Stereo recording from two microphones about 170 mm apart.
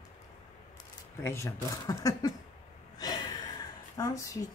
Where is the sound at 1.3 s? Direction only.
15° left (ahead or behind).